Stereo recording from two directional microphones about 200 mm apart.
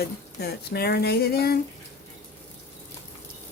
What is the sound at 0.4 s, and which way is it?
Speech, 50° left (ahead or behind).